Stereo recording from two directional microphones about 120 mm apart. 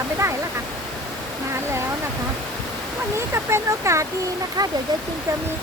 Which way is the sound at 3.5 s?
25° right (ahead or behind).